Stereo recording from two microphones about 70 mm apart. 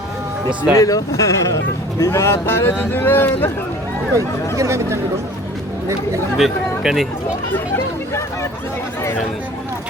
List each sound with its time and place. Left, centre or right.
0.8 s speech: left
4.1 s speech: right
6.3 s speech: centre